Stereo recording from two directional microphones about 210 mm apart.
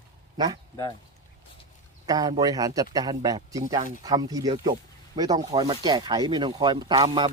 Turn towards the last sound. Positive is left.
turn(degrees=-20)  # may be behind; listen again after turning